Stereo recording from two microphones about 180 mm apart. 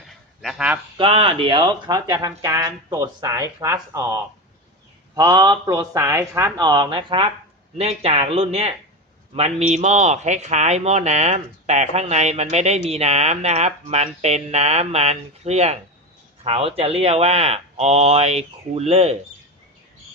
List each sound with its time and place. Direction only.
0.4 s a sound: 5° right (ahead or behind)
0.9 s speech: 30° right (ahead or behind)
5.1 s speech: 20° right (ahead or behind)